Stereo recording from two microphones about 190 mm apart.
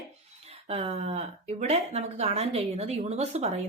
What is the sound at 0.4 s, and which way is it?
Speech, 30° right (ahead or behind).